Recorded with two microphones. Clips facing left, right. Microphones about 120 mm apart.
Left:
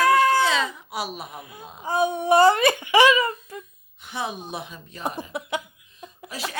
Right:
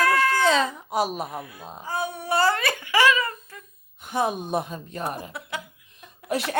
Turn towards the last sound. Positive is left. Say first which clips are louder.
# right 8 dB
turn(degrees=-60)  # may be behind; listen again after turning